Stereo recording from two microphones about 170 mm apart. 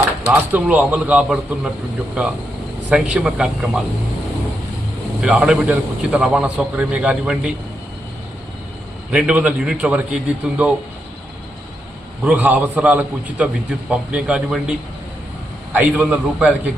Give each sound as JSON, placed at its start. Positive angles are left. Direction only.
{"t": 0.3, "sound": "a man's voice", "side_deg": -10}
{"t": 2.9, "sound": "speech", "side_deg": -5}
{"t": 5.2, "sound": "a man's voice", "side_deg": -5}
{"t": 9.0, "sound": "a man's voice", "side_deg": -5}
{"t": 12.2, "sound": "a man's voice", "side_deg": -10}